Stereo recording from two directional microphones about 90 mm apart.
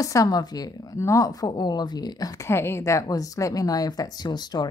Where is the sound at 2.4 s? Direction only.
30° left (ahead or behind); by 4.7 s 50° left (ahead or behind).